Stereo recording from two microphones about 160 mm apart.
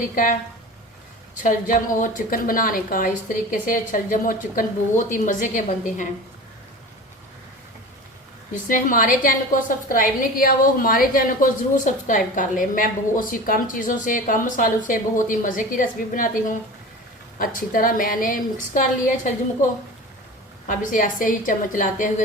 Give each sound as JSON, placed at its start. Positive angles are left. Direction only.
{"t": 1.4, "sound": "a woman's voice", "side_deg": 55}
{"t": 8.6, "sound": "a woman's voice", "side_deg": 55}
{"t": 20.7, "sound": "a woman's voice", "side_deg": 55}